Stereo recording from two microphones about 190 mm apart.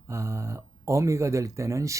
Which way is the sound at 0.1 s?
15° right (ahead or behind).